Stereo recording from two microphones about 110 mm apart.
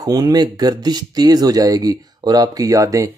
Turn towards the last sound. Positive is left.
turn(degrees=-30)  # may be behind; listen again after turning